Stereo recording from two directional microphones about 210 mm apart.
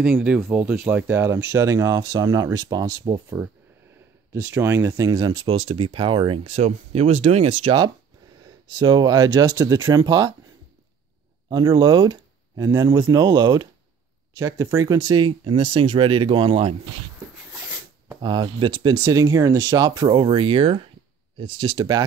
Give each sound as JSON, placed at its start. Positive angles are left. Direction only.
{"t": 0.0, "sound": "speech", "side_deg": -5}
{"t": 11.4, "sound": "speech", "side_deg": -20}
{"t": 18.2, "sound": "speech", "side_deg": -20}